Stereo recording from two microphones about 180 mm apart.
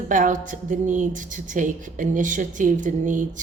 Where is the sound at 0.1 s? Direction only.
45° right (ahead or behind).